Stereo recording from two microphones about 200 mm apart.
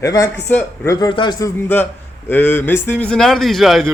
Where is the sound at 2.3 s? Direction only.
10° left (ahead or behind).